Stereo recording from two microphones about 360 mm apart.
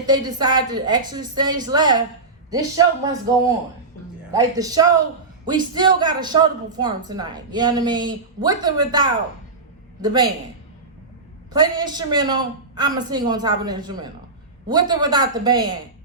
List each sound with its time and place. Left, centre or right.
0.0 s a woman's voice: centre
11.5 s a woman's voice: centre